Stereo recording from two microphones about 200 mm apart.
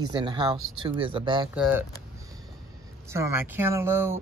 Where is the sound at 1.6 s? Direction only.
10° right (ahead or behind).